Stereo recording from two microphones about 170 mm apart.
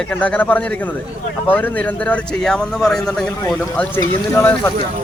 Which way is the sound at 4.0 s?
15° left (ahead or behind).